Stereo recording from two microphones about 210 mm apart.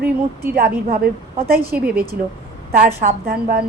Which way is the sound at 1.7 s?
5° right (ahead or behind).